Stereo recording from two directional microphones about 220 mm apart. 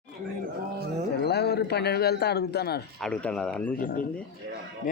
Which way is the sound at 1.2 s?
50° left (ahead or behind).